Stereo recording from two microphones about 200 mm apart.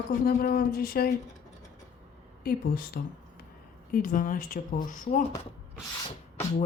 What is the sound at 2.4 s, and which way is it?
Speech, 50° left (ahead or behind).